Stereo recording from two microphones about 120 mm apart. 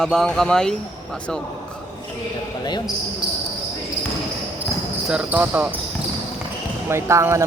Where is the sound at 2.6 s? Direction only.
35° left (ahead or behind).